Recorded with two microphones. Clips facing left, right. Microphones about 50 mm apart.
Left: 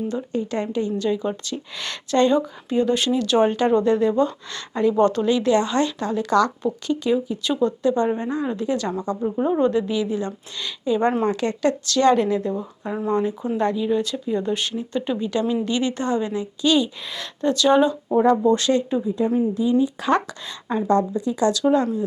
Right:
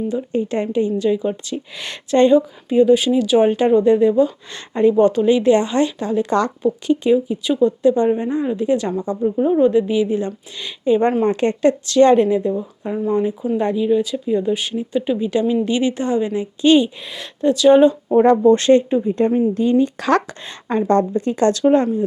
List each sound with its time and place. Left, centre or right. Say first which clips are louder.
0.3 s a woman's voice: right 5 dB; right
2.3 s a woman's voice: right 6 dB; centre
4.9 s a woman's voice: right 4 dB; centre
6.6 s a woman's voice: right 6 dB; centre
9.2 s speech: right 5 dB; centre
9.6 s a woman's voice: right 5 dB; centre
17.1 s speech: right 4 dB; centre
18.2 s speech: right 5 dB; right
19.0 s speech: right 4 dB; right
20.2 s speech: right 1 dB; right
20.7 s speech: right 3 dB; right
21.6 s speech: right 4 dB; right